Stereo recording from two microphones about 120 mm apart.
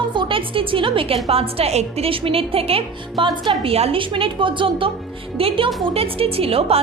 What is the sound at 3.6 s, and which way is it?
A woman's voice, 55° right (ahead or behind).